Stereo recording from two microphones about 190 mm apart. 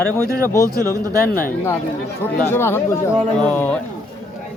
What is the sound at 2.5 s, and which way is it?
Speech, 15° left (ahead or behind).